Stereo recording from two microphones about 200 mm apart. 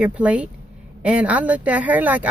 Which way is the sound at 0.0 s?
5° right (ahead or behind).